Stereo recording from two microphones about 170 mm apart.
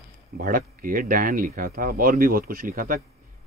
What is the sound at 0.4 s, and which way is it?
Speech, 55° right (ahead or behind).